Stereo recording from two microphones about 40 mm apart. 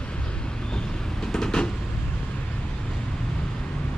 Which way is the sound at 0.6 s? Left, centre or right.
Left.